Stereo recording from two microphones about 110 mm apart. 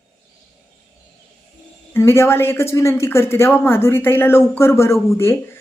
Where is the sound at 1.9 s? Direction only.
25° left (ahead or behind).